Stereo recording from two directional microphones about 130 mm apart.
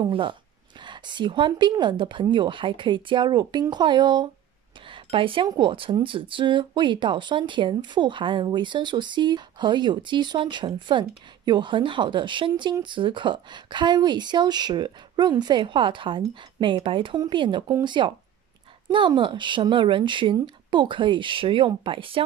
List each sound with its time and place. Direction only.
0.0 s speech: 40° right (ahead or behind)